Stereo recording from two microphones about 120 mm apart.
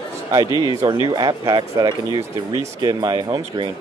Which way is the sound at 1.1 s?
35° right (ahead or behind).